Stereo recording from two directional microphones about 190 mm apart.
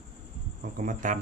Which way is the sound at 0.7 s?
45° right (ahead or behind).